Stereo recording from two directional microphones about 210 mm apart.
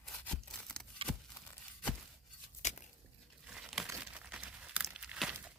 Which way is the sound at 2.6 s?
35° left (ahead or behind).